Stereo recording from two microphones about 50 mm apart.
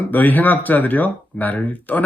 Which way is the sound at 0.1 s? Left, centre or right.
Left.